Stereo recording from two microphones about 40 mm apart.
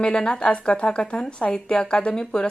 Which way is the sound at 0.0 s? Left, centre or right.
Left.